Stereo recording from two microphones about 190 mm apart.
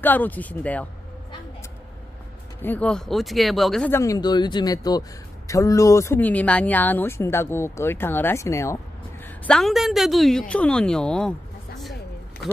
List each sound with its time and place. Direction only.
0.0 s speech: 10° left (ahead or behind)
2.6 s speech: 10° left (ahead or behind)
3.9 s speech: 15° left (ahead or behind)
9.2 s a woman's voice: 5° left (ahead or behind)